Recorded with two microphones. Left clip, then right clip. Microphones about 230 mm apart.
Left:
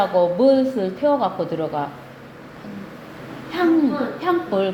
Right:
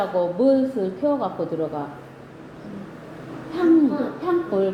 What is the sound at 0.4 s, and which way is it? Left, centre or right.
Speech, left.